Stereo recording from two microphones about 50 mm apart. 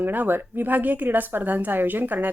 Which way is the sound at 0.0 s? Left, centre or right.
Right.